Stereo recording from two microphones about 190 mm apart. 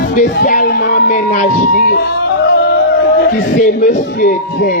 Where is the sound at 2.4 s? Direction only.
60° left (ahead or behind).